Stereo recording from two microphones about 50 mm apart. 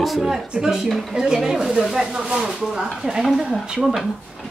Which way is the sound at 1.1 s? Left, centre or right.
Centre.